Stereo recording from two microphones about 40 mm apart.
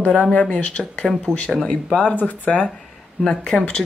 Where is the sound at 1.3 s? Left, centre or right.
Centre.